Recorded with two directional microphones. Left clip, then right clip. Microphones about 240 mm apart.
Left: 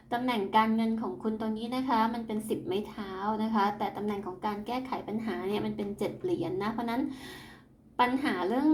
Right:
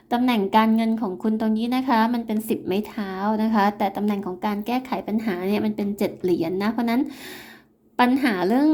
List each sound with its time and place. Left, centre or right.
0.1 s a woman's voice: right